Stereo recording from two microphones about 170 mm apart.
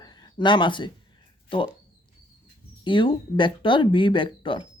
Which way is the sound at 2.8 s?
30° left (ahead or behind).